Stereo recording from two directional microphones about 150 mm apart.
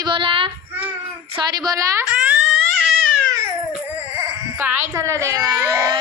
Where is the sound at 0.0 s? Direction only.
35° right (ahead or behind).